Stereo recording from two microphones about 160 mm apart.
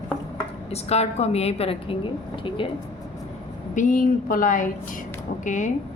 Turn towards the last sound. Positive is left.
turn(degrees=50)  # may be behind; listen again after turning